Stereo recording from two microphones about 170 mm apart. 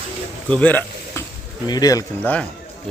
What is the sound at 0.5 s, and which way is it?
Speech, 10° left (ahead or behind).